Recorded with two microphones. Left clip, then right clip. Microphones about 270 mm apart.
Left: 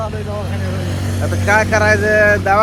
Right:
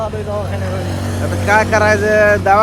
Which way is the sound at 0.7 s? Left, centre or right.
Right.